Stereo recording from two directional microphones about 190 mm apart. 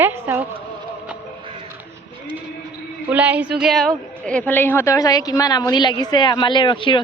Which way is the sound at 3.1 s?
10° right (ahead or behind).